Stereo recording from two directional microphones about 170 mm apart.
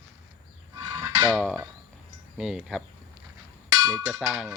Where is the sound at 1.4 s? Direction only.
5° right (ahead or behind).